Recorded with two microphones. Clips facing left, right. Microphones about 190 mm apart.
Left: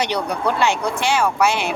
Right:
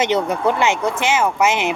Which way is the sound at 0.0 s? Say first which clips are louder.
Right 4 dB; 20° right (ahead or behind).